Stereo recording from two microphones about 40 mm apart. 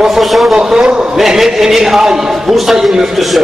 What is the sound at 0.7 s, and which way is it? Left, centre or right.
Speech, centre.